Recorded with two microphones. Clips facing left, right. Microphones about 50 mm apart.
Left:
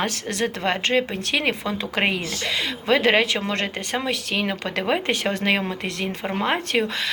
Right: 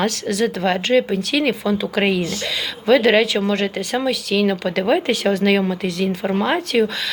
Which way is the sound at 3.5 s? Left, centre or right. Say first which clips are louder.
Right 5 dB; left.